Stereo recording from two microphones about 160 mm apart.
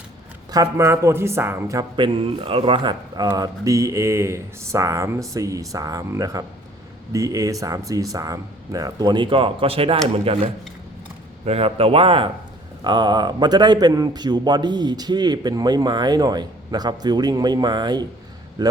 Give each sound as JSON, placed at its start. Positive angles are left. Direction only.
{"t": 0.5, "sound": "speech", "side_deg": -20}
{"t": 11.4, "sound": "a man's voice", "side_deg": -35}